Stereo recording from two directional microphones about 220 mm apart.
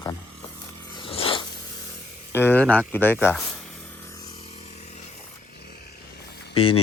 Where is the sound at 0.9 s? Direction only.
25° left (ahead or behind).